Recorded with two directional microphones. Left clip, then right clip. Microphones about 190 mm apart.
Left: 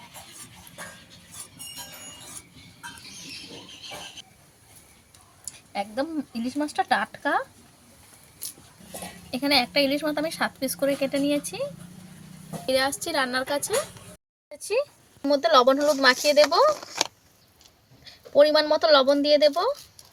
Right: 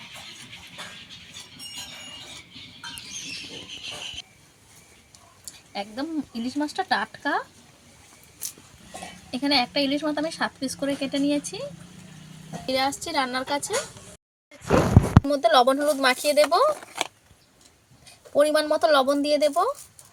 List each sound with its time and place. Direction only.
5.7 s a woman's voice: 10° left (ahead or behind)
9.3 s a woman's voice: 10° left (ahead or behind)
12.6 s a woman's voice: 5° left (ahead or behind)
15.3 s a woman's voice: 10° left (ahead or behind)
16.6 s a sound: 30° left (ahead or behind)
18.3 s a woman's voice: 5° left (ahead or behind)